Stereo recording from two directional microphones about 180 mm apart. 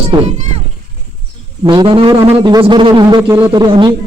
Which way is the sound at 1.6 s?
25° right (ahead or behind).